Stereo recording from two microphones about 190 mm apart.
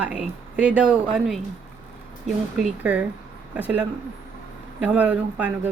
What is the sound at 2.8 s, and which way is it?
Speech, 5° right (ahead or behind).